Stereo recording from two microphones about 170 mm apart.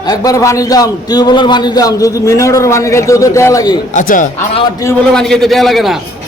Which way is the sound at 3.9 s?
50° left (ahead or behind).